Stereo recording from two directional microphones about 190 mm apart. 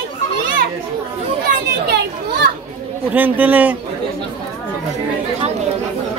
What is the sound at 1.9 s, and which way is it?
Children playing, 55° right (ahead or behind).